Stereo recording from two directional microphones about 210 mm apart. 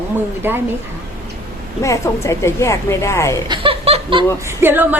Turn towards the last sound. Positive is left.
turn(degrees=-10)  # may be behind; listen again after turning